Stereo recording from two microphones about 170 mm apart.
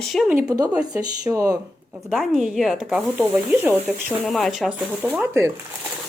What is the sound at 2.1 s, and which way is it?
Speech, centre (ahead or behind).